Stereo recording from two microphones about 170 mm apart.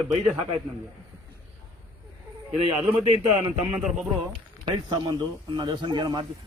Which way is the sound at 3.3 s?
35° right (ahead or behind).